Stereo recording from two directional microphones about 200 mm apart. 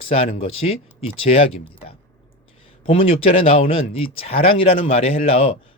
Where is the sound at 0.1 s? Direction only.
35° left (ahead or behind).